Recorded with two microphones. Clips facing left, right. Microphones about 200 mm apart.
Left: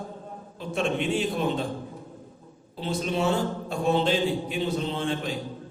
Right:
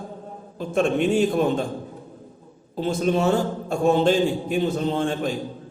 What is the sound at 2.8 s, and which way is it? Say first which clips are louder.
A man's voice: right 6 dB; 45° right (ahead or behind).